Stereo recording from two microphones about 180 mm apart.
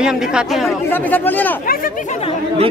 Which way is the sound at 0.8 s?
10° left (ahead or behind).